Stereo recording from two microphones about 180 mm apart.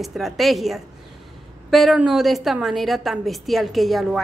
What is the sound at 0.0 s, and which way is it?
A woman's voice, centre (ahead or behind).